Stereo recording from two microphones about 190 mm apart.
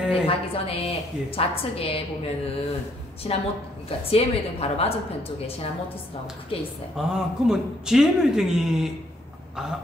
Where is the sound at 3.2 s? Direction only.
30° left (ahead or behind).